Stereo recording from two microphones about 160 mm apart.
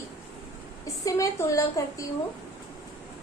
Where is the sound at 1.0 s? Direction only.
20° left (ahead or behind).